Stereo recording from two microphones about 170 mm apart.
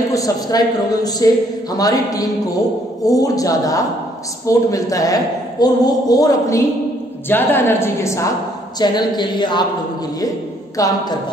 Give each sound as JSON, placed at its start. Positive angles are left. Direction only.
{"t": 0.1, "sound": "a woman's voice", "side_deg": 20}
{"t": 10.8, "sound": "a woman's voice", "side_deg": 20}